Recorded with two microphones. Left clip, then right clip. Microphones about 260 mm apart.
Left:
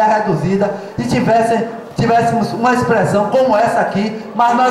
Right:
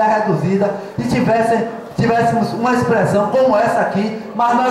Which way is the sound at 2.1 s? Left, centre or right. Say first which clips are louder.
Left 2 dB; centre.